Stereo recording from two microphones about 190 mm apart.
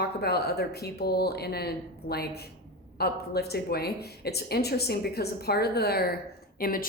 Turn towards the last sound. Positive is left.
turn(degrees=50)  # may be behind; listen again after turning